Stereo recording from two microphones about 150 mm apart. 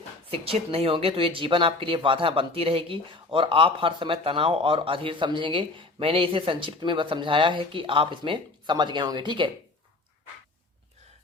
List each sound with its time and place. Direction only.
0.3 s speech: 40° right (ahead or behind)